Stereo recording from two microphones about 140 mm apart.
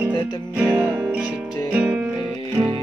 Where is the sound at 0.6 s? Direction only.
10° right (ahead or behind).